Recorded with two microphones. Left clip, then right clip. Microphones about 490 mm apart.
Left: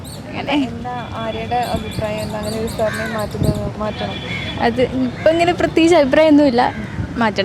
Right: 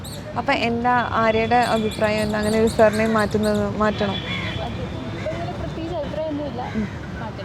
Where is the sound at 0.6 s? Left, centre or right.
Right.